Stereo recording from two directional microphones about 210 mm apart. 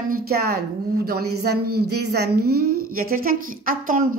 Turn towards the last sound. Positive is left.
turn(degrees=-40)  # may be behind; listen again after turning